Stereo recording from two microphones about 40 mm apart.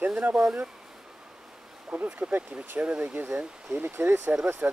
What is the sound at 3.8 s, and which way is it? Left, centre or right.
Speech, right.